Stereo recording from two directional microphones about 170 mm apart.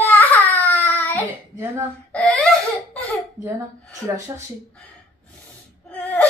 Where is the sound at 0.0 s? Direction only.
10° left (ahead or behind).